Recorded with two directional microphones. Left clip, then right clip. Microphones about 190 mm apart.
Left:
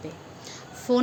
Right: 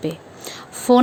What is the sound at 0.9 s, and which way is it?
Speech, 45° right (ahead or behind).